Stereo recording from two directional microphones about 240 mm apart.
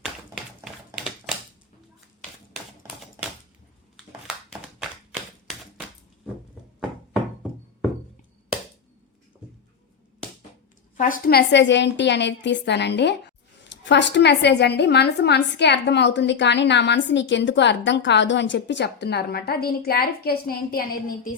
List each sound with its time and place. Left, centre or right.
0.9 s a sound: centre
4.8 s tap: centre
10.9 s a woman's voice: left